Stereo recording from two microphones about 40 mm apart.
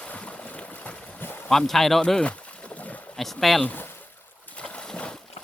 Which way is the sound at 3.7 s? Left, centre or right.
Left.